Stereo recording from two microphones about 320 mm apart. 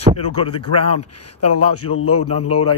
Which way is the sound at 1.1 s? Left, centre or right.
Left.